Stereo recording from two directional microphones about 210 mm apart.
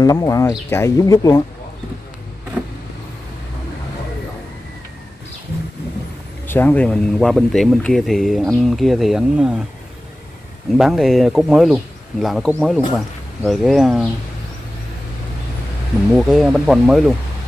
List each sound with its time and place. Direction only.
0.0 s speech: 15° left (ahead or behind)
6.4 s speech: 10° left (ahead or behind)
10.7 s speech: centre (ahead or behind)
16.2 s speech: centre (ahead or behind)